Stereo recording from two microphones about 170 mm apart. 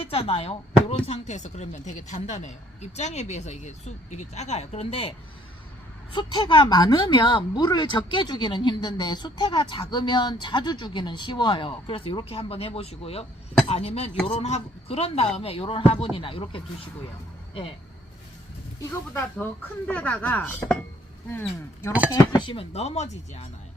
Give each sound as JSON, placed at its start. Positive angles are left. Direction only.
{"t": 0.0, "sound": "speech", "side_deg": 35}
{"t": 6.1, "sound": "speech", "side_deg": 25}
{"t": 18.9, "sound": "speech", "side_deg": 15}
{"t": 22.1, "sound": "speech", "side_deg": 25}